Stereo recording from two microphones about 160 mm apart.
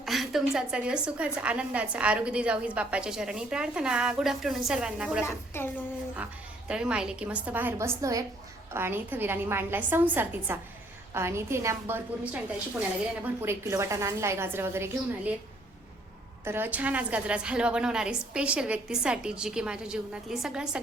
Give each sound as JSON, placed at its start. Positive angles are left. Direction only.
{"t": 0.0, "sound": "a woman's voice", "side_deg": 0}
{"t": 5.2, "sound": "a woman's voice", "side_deg": 15}
{"t": 6.7, "sound": "a woman's voice", "side_deg": -5}
{"t": 16.4, "sound": "a woman's voice", "side_deg": -15}